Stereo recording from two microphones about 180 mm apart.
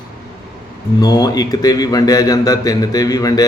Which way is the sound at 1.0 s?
20° left (ahead or behind).